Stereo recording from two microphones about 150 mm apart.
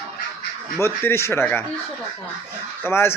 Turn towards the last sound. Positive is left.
turn(degrees=15)  # may be behind; listen again after turning